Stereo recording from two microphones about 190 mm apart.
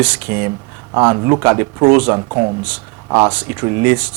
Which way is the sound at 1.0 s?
20° right (ahead or behind).